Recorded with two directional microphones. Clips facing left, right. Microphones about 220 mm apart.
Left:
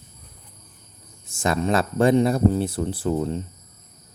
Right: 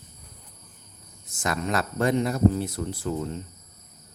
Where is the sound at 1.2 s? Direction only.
30° left (ahead or behind).